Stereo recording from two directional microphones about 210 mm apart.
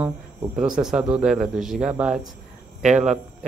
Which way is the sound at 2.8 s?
35° right (ahead or behind).